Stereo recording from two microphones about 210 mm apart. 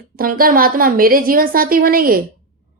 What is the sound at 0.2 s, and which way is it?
A woman's voice, 45° right (ahead or behind).